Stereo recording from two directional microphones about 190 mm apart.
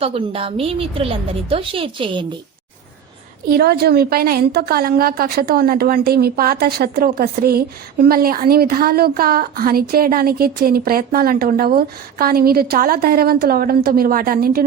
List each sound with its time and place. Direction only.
0.0 s a woman's voice: 30° right (ahead or behind)
3.5 s a woman's voice: 55° right (ahead or behind)